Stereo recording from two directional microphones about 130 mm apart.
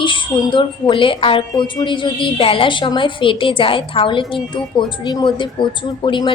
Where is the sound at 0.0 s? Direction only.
40° left (ahead or behind).